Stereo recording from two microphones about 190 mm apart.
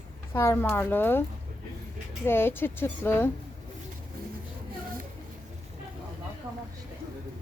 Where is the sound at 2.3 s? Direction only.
10° left (ahead or behind).